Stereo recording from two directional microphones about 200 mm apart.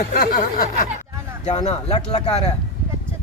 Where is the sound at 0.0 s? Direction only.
40° left (ahead or behind).